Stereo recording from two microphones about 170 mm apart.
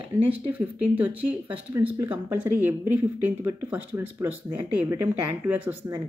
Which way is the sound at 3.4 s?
15° right (ahead or behind).